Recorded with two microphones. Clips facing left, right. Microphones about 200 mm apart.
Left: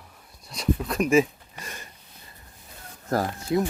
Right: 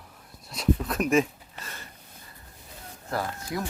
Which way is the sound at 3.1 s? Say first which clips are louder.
Left 5 dB; 40° left (ahead or behind).